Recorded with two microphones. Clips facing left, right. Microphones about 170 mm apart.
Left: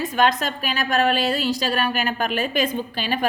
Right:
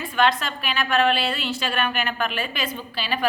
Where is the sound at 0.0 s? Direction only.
40° left (ahead or behind).